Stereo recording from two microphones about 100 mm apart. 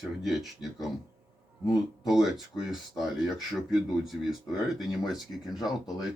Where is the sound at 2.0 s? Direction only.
5° right (ahead or behind).